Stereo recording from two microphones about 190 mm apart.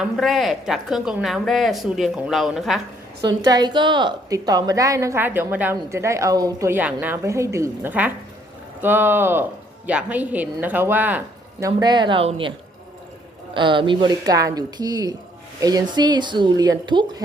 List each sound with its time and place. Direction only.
0.0 s a woman's voice: centre (ahead or behind)
3.2 s a woman's voice: 20° right (ahead or behind)
11.6 s a woman's voice: 20° right (ahead or behind)